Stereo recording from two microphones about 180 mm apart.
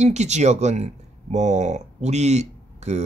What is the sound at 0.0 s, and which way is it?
Speech, 40° right (ahead or behind).